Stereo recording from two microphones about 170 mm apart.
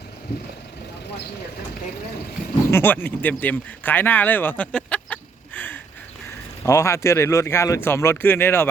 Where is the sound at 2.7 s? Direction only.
10° left (ahead or behind).